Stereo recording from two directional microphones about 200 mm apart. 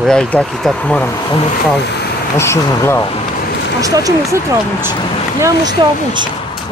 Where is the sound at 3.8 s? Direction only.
15° right (ahead or behind).